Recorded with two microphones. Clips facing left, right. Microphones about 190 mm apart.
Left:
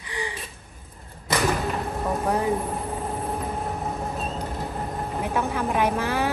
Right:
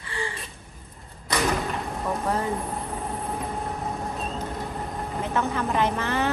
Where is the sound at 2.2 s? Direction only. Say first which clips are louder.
Left 3 dB; 15° left (ahead or behind).